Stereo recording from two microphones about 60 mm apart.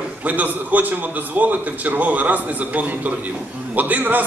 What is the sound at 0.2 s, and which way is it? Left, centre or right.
A man's voice, right.